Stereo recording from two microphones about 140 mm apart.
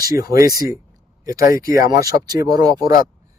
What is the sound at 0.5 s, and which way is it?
Speech, 25° right (ahead or behind).